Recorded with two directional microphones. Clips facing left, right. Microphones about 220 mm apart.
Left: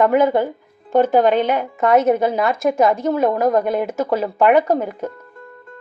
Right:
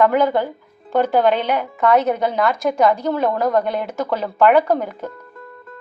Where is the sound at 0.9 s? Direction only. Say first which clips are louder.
Left 2 dB; 45° left (ahead or behind).